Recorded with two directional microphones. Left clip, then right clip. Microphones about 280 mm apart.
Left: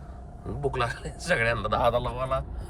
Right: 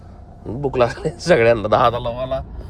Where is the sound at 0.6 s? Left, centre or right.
Centre.